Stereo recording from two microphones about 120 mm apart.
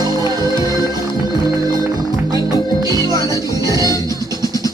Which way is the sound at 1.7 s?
30° right (ahead or behind).